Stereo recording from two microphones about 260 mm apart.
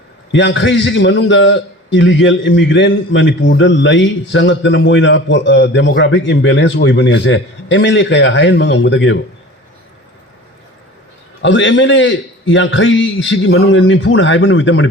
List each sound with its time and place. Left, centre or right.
0.3 s a man's voice: left
11.4 s a man's voice: left